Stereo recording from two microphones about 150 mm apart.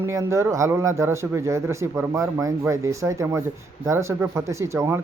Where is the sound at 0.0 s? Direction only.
20° right (ahead or behind).